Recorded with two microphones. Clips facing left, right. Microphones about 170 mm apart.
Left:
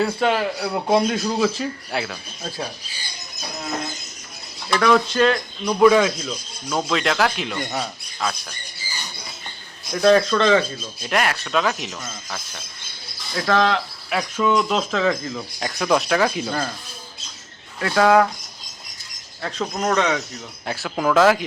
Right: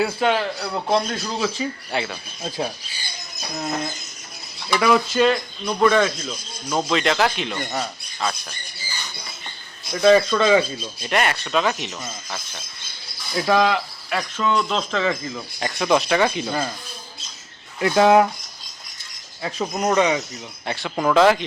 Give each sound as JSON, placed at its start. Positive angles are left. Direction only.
{"t": 0.0, "sound": "speech", "side_deg": 0}
{"t": 4.7, "sound": "speech", "side_deg": -5}
{"t": 5.8, "sound": "speech", "side_deg": 10}
{"t": 9.9, "sound": "speech", "side_deg": 0}
{"t": 14.1, "sound": "speech", "side_deg": 5}
{"t": 17.7, "sound": "speech", "side_deg": -20}
{"t": 19.4, "sound": "speech", "side_deg": -10}
{"t": 20.7, "sound": "speech", "side_deg": 0}